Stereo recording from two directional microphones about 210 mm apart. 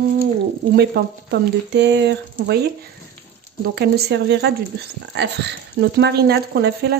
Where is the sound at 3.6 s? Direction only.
50° right (ahead or behind).